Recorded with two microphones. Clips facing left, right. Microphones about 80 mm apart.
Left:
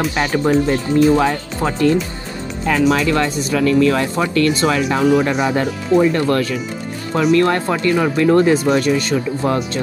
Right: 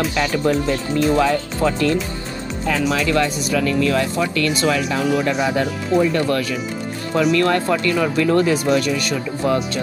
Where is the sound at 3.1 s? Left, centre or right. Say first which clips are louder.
Left 1 dB; left.